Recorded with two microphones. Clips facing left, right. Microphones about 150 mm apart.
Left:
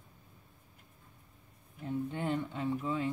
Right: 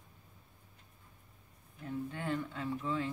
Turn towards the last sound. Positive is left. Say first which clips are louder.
# left 3 dB
turn(degrees=20)  # may be behind; listen again after turning